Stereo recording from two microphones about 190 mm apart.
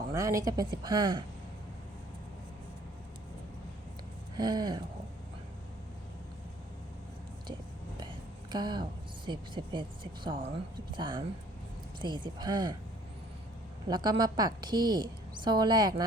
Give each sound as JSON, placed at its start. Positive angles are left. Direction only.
{"t": 0.1, "sound": "a woman's voice", "side_deg": -15}
{"t": 4.4, "sound": "a woman's voice", "side_deg": -20}
{"t": 8.5, "sound": "a woman's voice", "side_deg": -20}
{"t": 13.8, "sound": "a woman's voice", "side_deg": -20}